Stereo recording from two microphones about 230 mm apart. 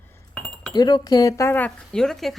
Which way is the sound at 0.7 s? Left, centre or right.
Centre.